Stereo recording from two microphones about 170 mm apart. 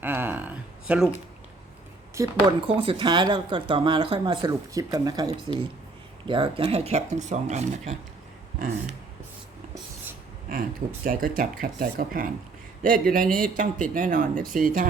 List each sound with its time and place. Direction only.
0.0 s music: 10° right (ahead or behind)
2.2 s speech: 20° right (ahead or behind)
2.6 s speech: 35° right (ahead or behind)
11.0 s speech: 55° right (ahead or behind)